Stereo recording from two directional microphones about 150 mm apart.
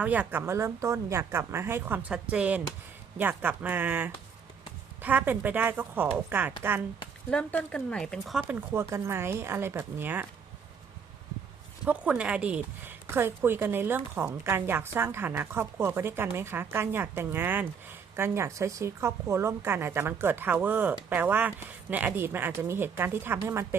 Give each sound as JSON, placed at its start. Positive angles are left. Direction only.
{"t": 0.0, "sound": "speech", "side_deg": -10}
{"t": 7.3, "sound": "speech", "side_deg": 5}
{"t": 8.4, "sound": "speech", "side_deg": -15}
{"t": 11.9, "sound": "speech", "side_deg": -10}